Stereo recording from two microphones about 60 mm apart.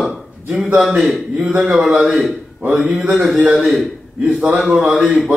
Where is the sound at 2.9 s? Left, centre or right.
Right.